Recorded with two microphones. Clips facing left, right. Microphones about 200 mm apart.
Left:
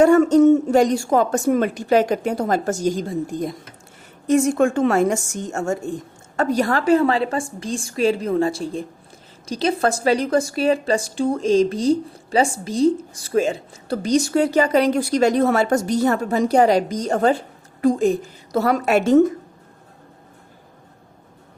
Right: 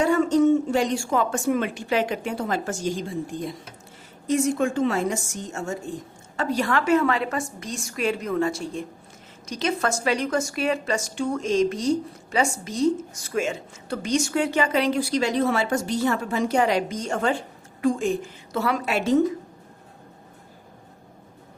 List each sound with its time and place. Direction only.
0.0 s a woman's voice: 45° left (ahead or behind)